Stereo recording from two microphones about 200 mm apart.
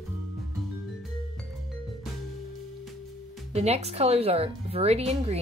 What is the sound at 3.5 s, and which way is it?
Speech, 30° right (ahead or behind).